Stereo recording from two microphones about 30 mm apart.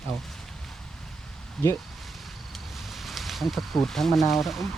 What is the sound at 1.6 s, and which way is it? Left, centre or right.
Speech, centre.